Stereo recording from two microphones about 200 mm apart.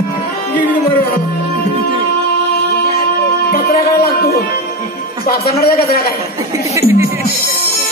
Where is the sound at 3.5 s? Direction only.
50° left (ahead or behind).